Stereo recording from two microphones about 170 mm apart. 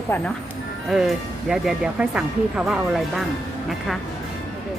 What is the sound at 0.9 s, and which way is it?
Speech, centre (ahead or behind).